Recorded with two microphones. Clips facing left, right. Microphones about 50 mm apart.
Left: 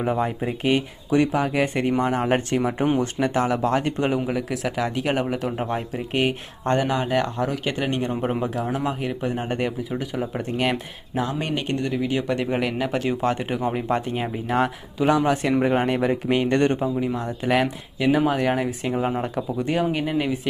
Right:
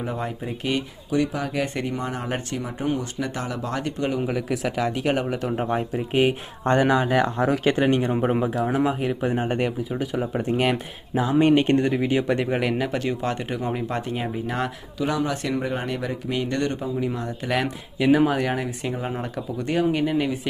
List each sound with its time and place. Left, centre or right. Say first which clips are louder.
0.4 s speech: left 3 dB; left
1.1 s speech: left 4 dB; left
1.5 s speech: left 4 dB; left
1.8 s speech: left 6 dB; left
4.2 s speech: even; centre
6.7 s speech: right 2 dB; right
7.8 s a man's voice: right 4 dB; centre
11.3 s speech: right 8 dB; right
12.1 s speech: right 1 dB; centre
14.9 s speech: left 5 dB; left
17.1 s speech: left 3 dB; centre